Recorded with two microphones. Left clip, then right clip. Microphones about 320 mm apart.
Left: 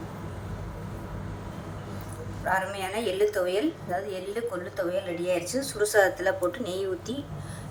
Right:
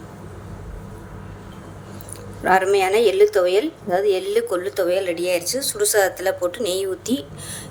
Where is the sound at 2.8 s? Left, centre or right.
Right.